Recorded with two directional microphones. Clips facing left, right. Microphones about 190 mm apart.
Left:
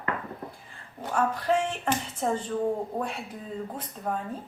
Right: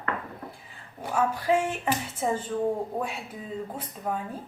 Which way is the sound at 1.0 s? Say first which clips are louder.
Right 1 dB; 5° right (ahead or behind).